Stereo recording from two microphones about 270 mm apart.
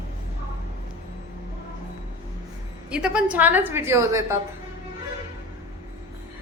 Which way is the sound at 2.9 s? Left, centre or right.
Centre.